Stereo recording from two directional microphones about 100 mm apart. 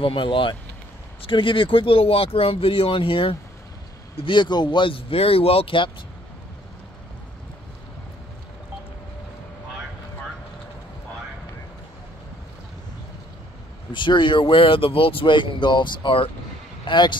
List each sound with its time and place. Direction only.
0.0 s speech: 60° left (ahead or behind)
13.9 s speech: 50° left (ahead or behind)